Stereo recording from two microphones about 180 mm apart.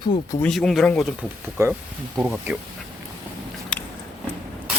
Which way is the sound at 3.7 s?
5° left (ahead or behind).